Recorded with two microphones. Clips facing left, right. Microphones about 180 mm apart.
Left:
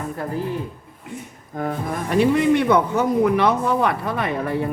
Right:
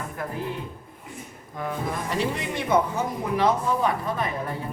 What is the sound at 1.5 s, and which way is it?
A man's voice, 55° left (ahead or behind).